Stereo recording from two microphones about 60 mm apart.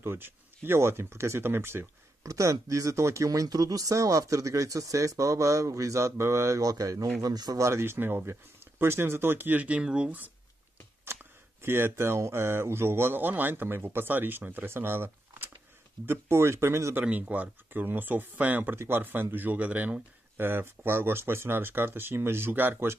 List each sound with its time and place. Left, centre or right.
0.0 s speech: right
2.2 s speech: right
6.6 s speech: right
7.2 s speech: right
9.6 s speech: right
11.6 s speech: right
16.1 s speech: right
17.0 s speech: right
20.3 s speech: right